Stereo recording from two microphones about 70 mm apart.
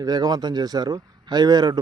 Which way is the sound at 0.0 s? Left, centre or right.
Right.